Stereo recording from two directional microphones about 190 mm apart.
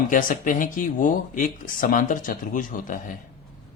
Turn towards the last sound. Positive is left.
turn(degrees=45)  # may be behind; listen again after turning